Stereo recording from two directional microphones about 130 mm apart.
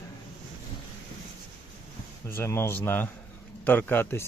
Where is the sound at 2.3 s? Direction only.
15° left (ahead or behind).